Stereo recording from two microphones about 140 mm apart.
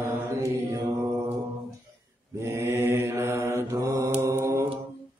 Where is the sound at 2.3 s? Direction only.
20° right (ahead or behind).